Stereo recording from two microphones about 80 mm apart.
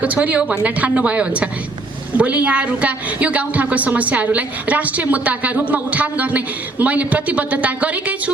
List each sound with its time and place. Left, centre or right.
0.0 s a woman's voice: centre